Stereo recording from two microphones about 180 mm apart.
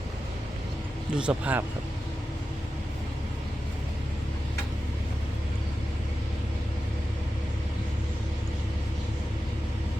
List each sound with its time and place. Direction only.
1.1 s speech: 5° right (ahead or behind)